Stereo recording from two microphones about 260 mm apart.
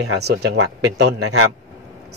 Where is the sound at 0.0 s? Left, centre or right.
Right.